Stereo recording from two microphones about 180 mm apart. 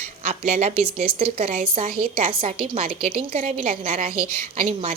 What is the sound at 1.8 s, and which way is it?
Speech, 55° right (ahead or behind).